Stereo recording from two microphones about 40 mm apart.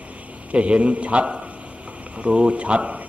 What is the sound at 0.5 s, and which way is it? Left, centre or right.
A man's voice, right.